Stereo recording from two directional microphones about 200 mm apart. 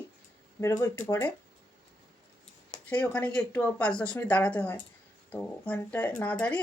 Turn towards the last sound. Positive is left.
turn(degrees=5)  # may be behind; listen again after turning